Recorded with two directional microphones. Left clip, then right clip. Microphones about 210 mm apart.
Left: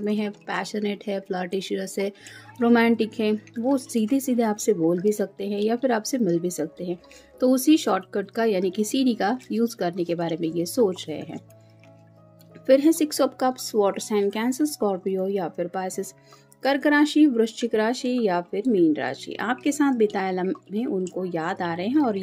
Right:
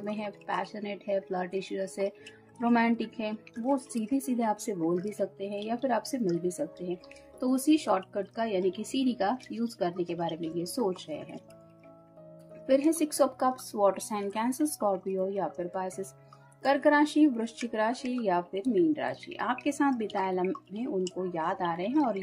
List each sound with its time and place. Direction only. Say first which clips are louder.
0.0 s speech: left 8 dB; 45° left (ahead or behind)
12.6 s speech: left 7 dB; 45° left (ahead or behind)